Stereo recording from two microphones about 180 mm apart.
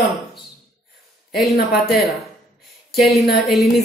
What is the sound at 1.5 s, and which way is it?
Speech, 60° left (ahead or behind).